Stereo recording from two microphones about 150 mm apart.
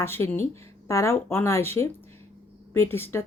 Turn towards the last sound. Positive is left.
turn(degrees=15)  # may be behind; listen again after turning